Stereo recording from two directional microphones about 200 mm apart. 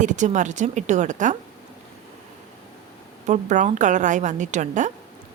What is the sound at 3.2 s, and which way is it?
A woman's voice, 35° right (ahead or behind).